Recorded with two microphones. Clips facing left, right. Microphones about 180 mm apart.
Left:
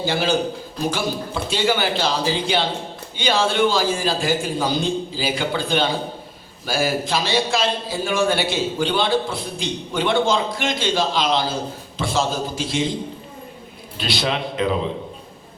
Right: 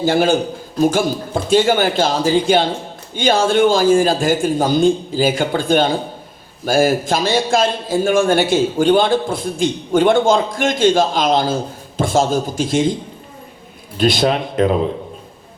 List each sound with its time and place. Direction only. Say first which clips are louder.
0.0 s a man's voice: right 6 dB; 50° right (ahead or behind)
14.0 s a man's voice: right 8 dB; 50° right (ahead or behind)